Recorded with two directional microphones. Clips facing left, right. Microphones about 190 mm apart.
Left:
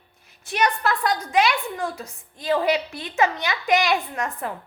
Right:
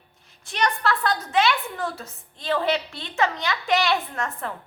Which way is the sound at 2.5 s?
15° left (ahead or behind).